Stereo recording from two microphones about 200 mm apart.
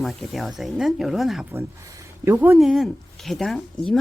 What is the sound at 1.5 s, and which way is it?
Speech, 15° right (ahead or behind).